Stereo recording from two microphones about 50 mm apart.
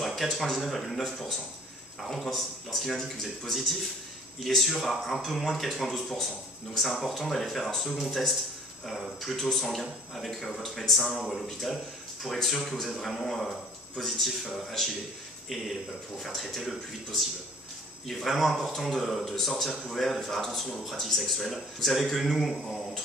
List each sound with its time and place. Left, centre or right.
0.0 s speech: centre
16.2 s speech: centre